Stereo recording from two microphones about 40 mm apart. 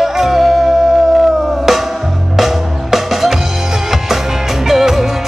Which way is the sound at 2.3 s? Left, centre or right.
Centre.